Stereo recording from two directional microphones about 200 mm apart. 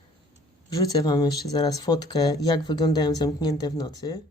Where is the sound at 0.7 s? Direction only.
20° left (ahead or behind).